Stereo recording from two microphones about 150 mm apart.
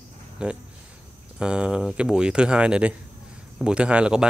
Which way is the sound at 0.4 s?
5° right (ahead or behind).